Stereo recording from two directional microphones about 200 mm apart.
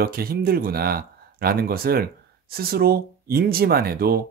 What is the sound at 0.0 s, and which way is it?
Speech, 50° right (ahead or behind).